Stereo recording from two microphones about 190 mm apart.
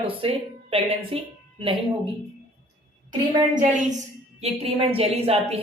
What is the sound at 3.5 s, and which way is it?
A woman's voice, 40° right (ahead or behind).